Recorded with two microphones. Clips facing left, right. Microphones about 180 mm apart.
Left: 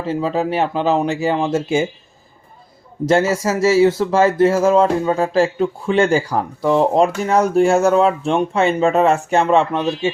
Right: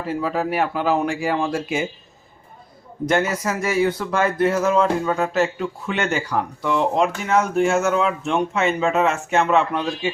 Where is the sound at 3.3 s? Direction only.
25° left (ahead or behind).